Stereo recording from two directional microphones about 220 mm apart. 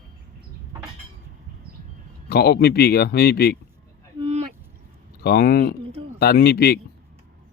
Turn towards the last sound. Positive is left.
turn(degrees=45)  # may be behind; listen again after turning